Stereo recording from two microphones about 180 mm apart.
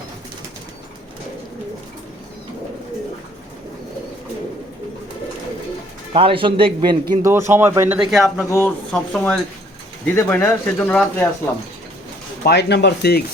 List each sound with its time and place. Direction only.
6.1 s a man's voice: 30° right (ahead or behind)
7.1 s speech: 15° right (ahead or behind)
8.1 s speech: centre (ahead or behind)
8.4 s speech: 10° left (ahead or behind)
12.4 s speech: 65° left (ahead or behind)